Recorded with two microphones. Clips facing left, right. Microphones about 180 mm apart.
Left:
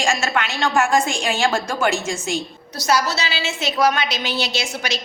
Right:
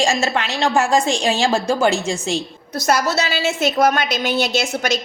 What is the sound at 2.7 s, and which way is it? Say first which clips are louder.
A woman's voice: right 2 dB; 50° right (ahead or behind).